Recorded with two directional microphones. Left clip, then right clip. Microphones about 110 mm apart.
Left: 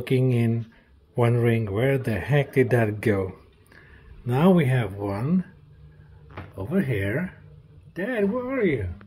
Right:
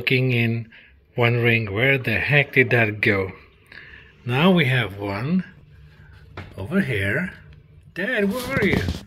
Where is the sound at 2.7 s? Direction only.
25° left (ahead or behind).